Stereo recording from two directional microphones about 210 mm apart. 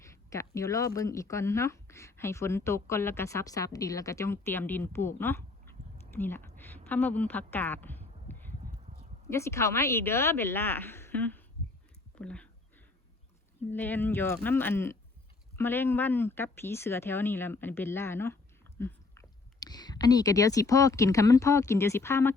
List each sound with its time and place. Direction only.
0.0 s a woman's voice: 15° left (ahead or behind)
13.7 s speech: 10° left (ahead or behind)